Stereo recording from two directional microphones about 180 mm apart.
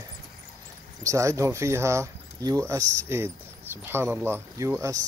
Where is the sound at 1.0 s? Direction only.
15° right (ahead or behind).